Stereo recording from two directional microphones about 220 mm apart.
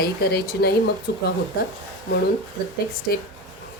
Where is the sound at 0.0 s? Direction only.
45° left (ahead or behind).